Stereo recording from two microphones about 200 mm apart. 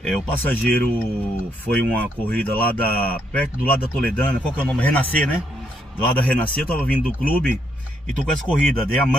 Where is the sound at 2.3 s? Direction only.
5° left (ahead or behind).